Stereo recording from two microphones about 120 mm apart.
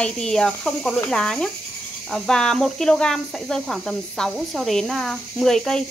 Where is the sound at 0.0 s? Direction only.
5° left (ahead or behind).